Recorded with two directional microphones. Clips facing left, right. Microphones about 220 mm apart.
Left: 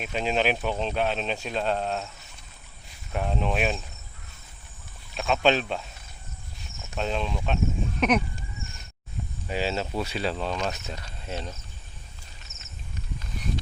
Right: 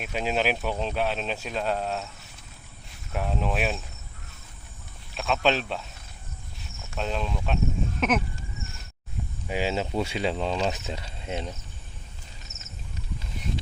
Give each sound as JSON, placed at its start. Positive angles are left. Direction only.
{"t": 0.0, "sound": "speech", "side_deg": -5}
{"t": 3.1, "sound": "speech", "side_deg": 0}
{"t": 5.1, "sound": "speech", "side_deg": 0}
{"t": 6.9, "sound": "speech", "side_deg": 0}
{"t": 9.5, "sound": "speech", "side_deg": -15}